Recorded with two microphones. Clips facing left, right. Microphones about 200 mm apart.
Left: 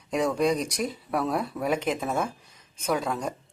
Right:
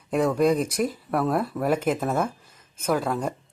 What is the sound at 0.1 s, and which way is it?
Speech, centre (ahead or behind).